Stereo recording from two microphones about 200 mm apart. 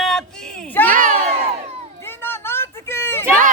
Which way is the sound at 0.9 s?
40° right (ahead or behind).